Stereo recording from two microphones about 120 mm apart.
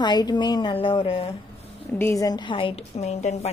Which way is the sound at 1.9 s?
25° left (ahead or behind).